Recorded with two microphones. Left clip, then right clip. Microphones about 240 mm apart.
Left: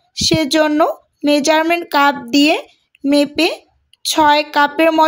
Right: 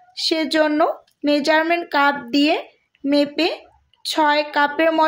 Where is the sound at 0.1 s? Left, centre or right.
Left.